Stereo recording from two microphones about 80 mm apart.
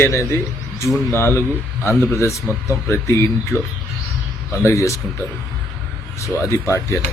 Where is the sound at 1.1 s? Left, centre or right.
Left.